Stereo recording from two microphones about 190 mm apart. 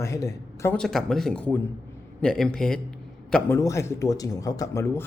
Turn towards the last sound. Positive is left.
turn(degrees=15)  # may be behind; listen again after turning